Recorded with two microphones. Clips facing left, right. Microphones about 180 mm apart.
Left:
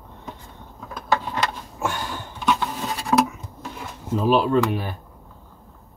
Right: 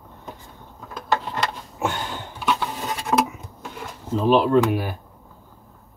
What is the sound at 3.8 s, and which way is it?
Drawer open or close, 5° left (ahead or behind).